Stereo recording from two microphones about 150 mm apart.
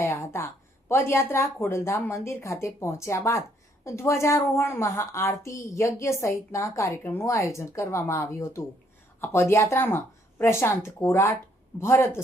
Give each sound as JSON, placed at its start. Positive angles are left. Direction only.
{"t": 0.0, "sound": "a woman's voice", "side_deg": 20}